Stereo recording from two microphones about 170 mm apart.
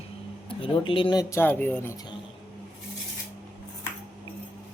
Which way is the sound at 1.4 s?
10° left (ahead or behind).